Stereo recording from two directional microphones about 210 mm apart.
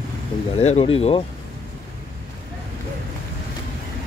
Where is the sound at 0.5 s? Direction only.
30° left (ahead or behind).